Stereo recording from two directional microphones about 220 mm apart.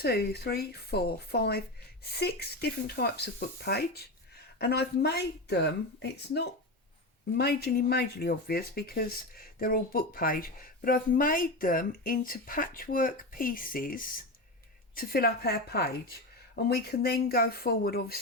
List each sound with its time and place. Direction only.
0.0 s speech: 45° left (ahead or behind)